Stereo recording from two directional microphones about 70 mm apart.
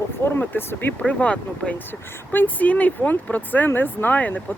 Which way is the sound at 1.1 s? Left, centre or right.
Centre.